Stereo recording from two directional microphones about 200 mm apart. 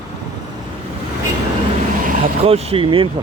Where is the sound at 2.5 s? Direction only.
30° right (ahead or behind).